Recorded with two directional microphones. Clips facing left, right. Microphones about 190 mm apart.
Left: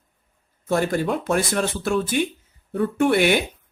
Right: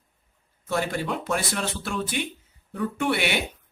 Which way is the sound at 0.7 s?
45° left (ahead or behind).